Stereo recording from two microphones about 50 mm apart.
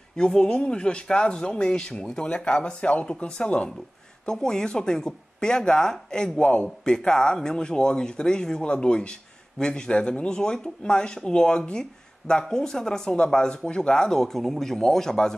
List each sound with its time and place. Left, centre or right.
0.1 s speech: centre